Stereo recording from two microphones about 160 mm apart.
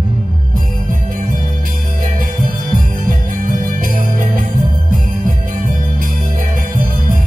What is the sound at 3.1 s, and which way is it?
Music, 55° right (ahead or behind).